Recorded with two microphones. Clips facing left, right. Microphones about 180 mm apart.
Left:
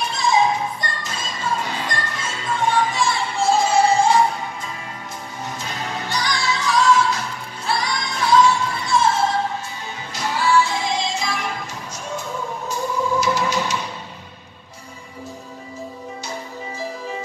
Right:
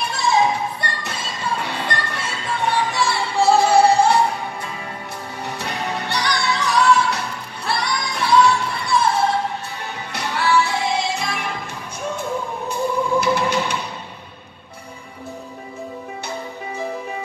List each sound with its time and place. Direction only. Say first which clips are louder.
0.1 s music: even; 65° right (ahead or behind)
5.6 s music: right 4 dB; 65° right (ahead or behind)
10.1 s music: left 1 dB; 65° right (ahead or behind)
13.2 s music: right 1 dB; 60° right (ahead or behind)